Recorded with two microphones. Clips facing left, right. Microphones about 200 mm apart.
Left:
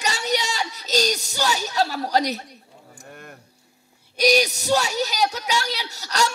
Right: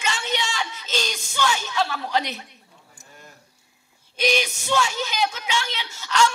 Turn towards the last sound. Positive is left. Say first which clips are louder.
# right 2 dB
turn(degrees=40)  # may be behind; listen again after turning